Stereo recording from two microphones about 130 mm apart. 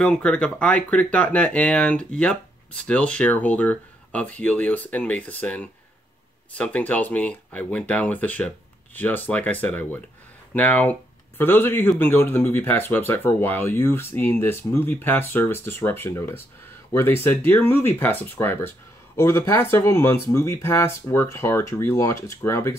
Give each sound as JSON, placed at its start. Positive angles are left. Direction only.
{"t": 0.0, "sound": "speech", "side_deg": 5}